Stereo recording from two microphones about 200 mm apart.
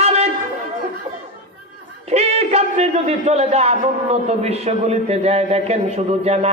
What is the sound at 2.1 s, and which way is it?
A man's voice, 30° right (ahead or behind).